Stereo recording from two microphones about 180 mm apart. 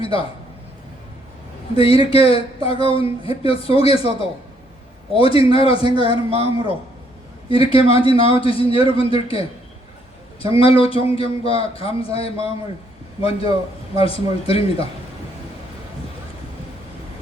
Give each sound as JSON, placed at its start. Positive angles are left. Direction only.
{"t": 0.0, "sound": "a man's voice", "side_deg": 30}
{"t": 1.7, "sound": "speech", "side_deg": 30}